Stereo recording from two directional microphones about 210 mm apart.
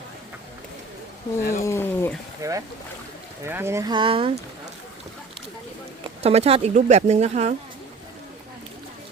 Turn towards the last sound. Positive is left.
turn(degrees=-30)  # may be behind; listen again after turning